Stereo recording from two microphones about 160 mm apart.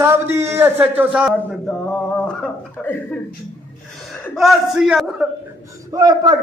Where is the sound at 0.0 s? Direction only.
15° right (ahead or behind).